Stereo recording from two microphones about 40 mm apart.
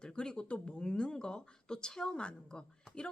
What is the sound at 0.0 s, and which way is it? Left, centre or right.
Speech, centre.